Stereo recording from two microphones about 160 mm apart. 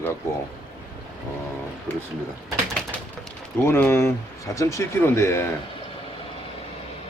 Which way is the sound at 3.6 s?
15° left (ahead or behind).